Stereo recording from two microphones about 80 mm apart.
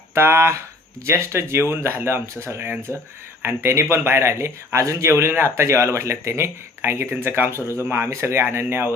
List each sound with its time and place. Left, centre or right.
0.1 s speech: right